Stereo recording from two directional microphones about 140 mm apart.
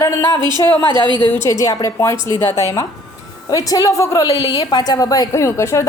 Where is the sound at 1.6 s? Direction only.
25° left (ahead or behind).